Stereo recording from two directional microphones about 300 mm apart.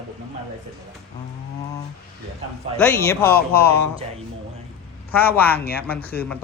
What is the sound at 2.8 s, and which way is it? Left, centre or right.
Speech, centre.